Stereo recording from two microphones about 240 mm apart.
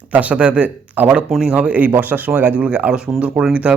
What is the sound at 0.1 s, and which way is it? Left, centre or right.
A man's voice, centre.